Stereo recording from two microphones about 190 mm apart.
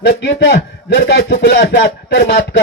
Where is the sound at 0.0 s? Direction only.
70° left (ahead or behind).